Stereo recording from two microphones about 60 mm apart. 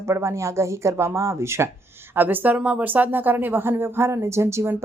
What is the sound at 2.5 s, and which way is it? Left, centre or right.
Speech, centre.